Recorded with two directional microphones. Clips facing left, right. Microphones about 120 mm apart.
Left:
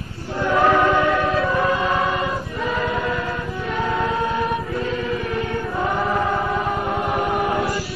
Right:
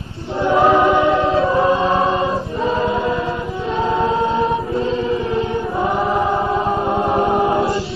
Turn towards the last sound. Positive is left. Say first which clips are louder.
# right 5 dB
turn(degrees=-25)  # may be behind; listen again after turning